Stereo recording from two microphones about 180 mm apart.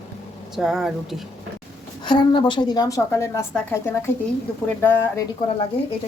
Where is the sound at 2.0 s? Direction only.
25° left (ahead or behind).